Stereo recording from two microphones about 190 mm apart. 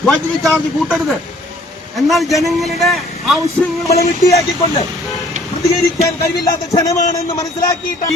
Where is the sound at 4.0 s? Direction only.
15° left (ahead or behind).